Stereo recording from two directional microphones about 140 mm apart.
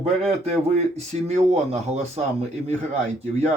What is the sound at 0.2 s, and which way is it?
Speech, 50° right (ahead or behind).